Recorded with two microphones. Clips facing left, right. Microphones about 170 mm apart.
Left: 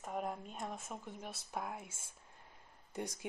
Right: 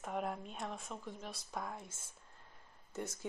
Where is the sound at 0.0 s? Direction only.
Centre (ahead or behind).